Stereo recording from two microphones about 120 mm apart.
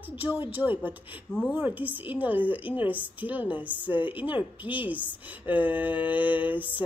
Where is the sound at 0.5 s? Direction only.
15° right (ahead or behind).